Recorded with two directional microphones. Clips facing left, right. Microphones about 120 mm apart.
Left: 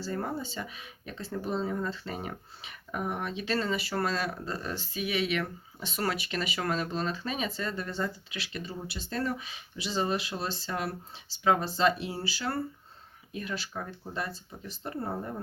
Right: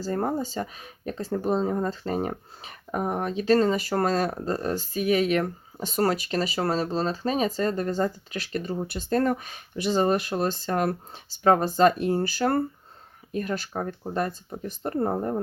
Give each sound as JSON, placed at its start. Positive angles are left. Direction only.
{"t": 0.0, "sound": "speech", "side_deg": -45}